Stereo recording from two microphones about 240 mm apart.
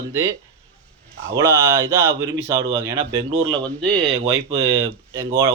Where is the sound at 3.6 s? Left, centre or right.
Centre.